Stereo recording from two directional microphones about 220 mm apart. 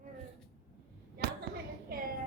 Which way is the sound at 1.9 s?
40° right (ahead or behind).